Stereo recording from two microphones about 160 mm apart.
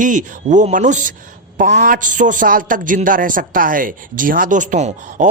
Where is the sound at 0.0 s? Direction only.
50° right (ahead or behind).